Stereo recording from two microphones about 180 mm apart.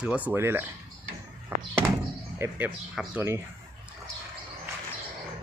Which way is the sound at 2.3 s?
15° right (ahead or behind).